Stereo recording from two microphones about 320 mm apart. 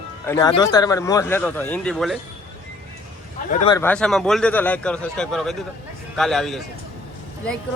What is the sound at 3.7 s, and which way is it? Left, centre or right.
Speech, centre.